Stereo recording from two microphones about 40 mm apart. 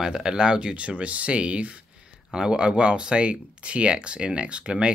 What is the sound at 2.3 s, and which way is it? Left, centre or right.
Speech, centre.